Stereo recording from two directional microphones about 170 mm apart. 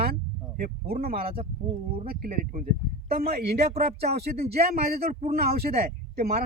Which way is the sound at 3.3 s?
65° right (ahead or behind).